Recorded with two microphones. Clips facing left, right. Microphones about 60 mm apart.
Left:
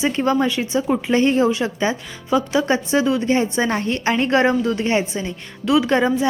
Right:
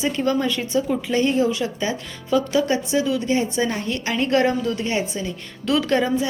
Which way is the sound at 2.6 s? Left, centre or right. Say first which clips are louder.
Left 3 dB; left.